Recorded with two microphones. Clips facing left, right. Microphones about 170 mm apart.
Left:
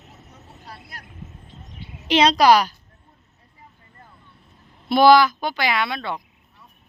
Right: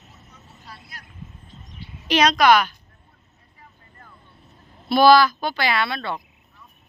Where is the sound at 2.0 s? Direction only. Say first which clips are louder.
Left 2 dB; 25° left (ahead or behind).